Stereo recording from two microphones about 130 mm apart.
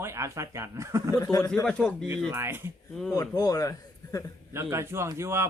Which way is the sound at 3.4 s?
30° left (ahead or behind).